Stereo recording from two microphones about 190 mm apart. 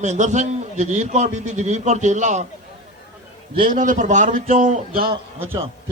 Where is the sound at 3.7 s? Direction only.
40° right (ahead or behind).